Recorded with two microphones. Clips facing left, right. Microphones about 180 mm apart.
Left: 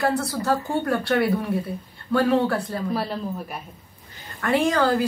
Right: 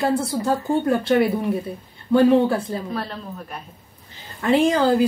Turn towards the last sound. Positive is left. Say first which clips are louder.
# right 3 dB
turn(degrees=-20)  # may be behind; listen again after turning